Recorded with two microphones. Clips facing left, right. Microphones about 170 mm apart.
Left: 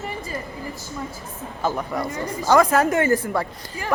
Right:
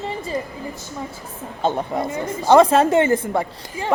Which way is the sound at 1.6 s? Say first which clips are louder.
Right 3 dB; 25° right (ahead or behind).